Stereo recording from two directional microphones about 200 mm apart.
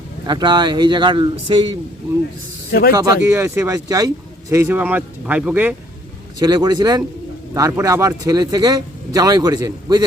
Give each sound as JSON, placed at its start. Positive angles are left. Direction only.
{"t": 0.3, "sound": "speech", "side_deg": -20}
{"t": 2.9, "sound": "speech", "side_deg": -15}
{"t": 6.4, "sound": "speech", "side_deg": -20}